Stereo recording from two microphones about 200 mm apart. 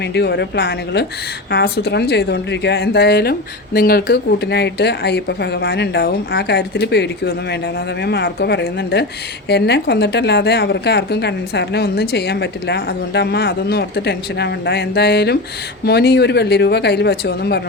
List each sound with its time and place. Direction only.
0.0 s a woman's voice: 55° left (ahead or behind)